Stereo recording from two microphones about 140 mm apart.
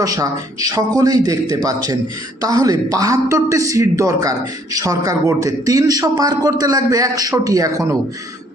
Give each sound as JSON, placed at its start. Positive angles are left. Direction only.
{"t": 0.0, "sound": "a man's voice", "side_deg": -25}